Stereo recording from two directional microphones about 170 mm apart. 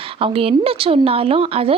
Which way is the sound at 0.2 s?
35° right (ahead or behind).